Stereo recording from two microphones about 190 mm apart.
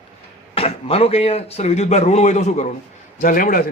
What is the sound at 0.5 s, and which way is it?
A man's voice, 30° left (ahead or behind).